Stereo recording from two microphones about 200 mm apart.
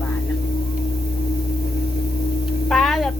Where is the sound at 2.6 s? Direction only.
Centre (ahead or behind).